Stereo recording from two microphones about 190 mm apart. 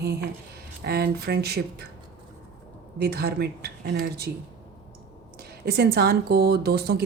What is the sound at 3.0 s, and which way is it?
Speech, 55° right (ahead or behind).